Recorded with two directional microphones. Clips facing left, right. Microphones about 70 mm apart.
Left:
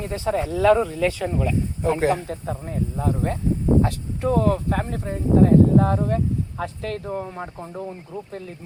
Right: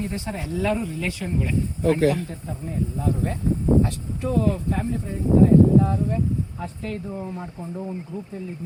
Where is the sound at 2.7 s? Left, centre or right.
Left.